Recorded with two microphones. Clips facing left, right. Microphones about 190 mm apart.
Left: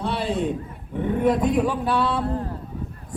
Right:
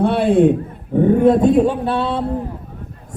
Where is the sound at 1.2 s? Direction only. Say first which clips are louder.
Right 5 dB; 25° right (ahead or behind).